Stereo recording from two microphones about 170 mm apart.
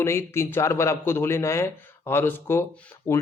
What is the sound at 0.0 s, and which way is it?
Speech, 15° left (ahead or behind).